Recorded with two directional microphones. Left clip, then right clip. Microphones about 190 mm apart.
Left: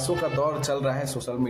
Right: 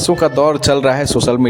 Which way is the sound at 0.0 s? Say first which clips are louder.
Right 12 dB; 45° right (ahead or behind).